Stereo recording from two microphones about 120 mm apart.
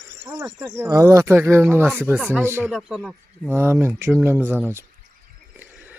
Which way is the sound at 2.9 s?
Centre (ahead or behind).